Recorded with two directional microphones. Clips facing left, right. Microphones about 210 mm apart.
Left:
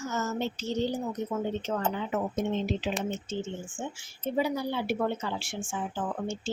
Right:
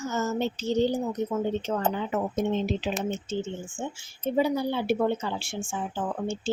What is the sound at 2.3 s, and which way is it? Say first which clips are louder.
Speech: right 3 dB; 35° right (ahead or behind).